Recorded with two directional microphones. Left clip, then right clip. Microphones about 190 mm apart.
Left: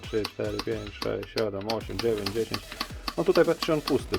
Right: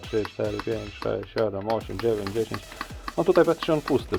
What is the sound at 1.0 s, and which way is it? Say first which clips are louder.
Speech: right 3 dB; 10° left (ahead or behind).